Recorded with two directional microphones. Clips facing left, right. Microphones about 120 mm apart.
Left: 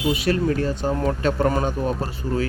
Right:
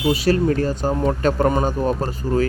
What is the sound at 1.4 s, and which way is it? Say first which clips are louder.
Speech: right 2 dB; 25° right (ahead or behind).